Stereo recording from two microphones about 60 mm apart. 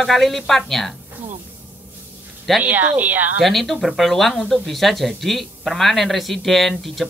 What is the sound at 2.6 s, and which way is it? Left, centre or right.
Speech, right.